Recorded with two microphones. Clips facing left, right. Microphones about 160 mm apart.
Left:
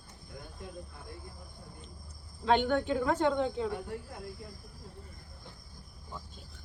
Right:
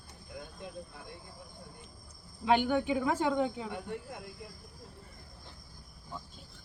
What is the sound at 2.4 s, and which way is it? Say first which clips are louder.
Speech: even; 10° right (ahead or behind).